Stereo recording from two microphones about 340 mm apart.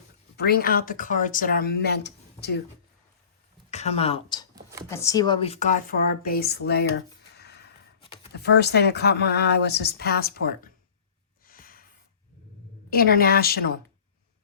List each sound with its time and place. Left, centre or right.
0.3 s speech: left
3.7 s speech: centre
11.4 s a sound: left
12.9 s speech: left